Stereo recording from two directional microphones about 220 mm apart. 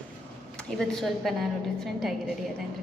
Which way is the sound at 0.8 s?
Centre (ahead or behind).